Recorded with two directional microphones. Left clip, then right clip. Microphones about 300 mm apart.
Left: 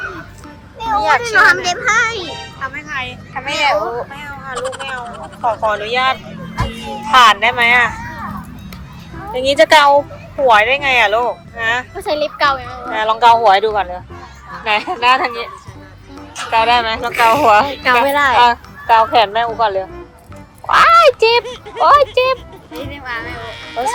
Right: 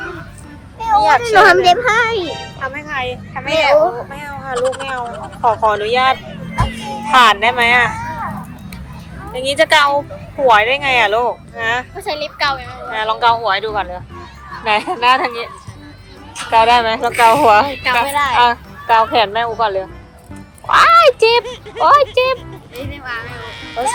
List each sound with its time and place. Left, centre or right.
0.9 s speech: centre
2.2 s music: centre
2.6 s music: centre
3.3 s speech: centre
9.3 s speech: centre
11.9 s a child's voice: left
12.9 s speech: centre
16.5 s speech: centre
18.0 s a child's voice: left
18.3 s speech: centre
23.3 s speech: centre